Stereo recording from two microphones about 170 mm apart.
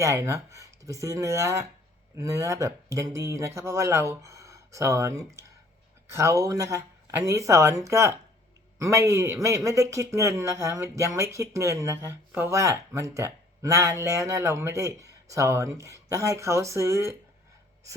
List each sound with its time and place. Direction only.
0.0 s a man's voice: 15° right (ahead or behind)